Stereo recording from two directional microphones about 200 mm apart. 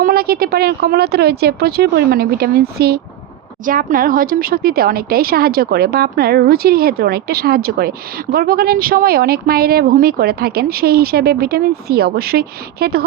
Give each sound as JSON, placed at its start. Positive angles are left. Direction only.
{"t": 0.0, "sound": "speech", "side_deg": -50}